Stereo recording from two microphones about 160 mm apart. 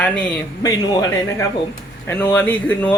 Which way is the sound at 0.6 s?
25° left (ahead or behind).